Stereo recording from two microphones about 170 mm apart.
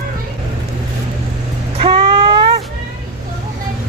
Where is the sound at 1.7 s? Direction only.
30° right (ahead or behind).